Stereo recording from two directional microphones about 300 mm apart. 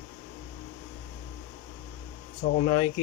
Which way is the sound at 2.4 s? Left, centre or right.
Left.